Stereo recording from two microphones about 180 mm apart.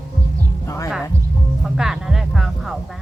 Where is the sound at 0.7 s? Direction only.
15° left (ahead or behind).